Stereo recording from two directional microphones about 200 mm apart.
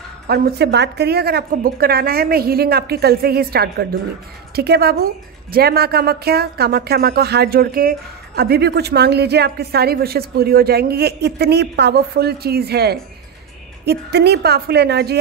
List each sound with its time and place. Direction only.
0.3 s a woman's voice: 55° right (ahead or behind)